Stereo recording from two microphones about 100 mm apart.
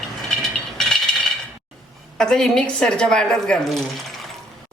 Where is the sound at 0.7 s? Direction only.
5° left (ahead or behind).